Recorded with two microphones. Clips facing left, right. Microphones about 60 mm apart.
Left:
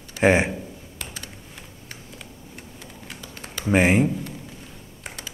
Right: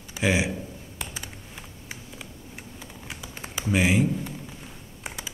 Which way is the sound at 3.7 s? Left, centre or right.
Left.